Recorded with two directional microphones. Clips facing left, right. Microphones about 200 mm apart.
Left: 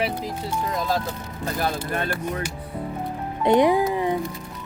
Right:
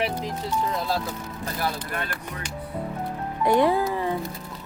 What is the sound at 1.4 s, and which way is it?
Speech, 25° left (ahead or behind).